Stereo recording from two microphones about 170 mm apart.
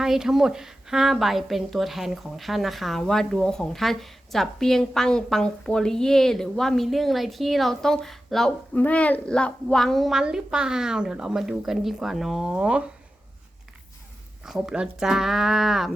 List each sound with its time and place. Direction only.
0.0 s a woman's voice: 5° right (ahead or behind)
14.4 s a woman's voice: 5° right (ahead or behind)